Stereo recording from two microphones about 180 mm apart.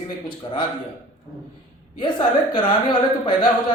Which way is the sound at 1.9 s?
25° left (ahead or behind).